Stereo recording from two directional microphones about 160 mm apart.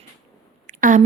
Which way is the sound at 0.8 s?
55° right (ahead or behind).